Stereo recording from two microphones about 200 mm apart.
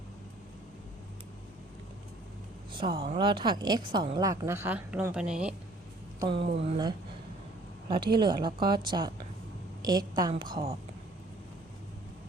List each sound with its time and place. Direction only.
2.7 s a woman's voice: 25° right (ahead or behind); by 5.5 s 5° right (ahead or behind)
6.1 s a woman's voice: 25° right (ahead or behind)